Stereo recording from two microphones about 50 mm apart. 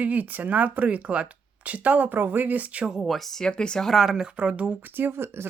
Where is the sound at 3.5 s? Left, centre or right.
Centre.